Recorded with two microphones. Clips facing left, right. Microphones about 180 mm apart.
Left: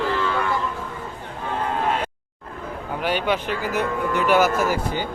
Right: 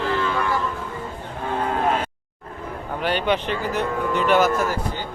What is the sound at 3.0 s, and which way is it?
Speech, 10° left (ahead or behind).